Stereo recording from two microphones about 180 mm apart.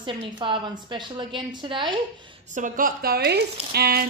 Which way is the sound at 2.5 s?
45° right (ahead or behind).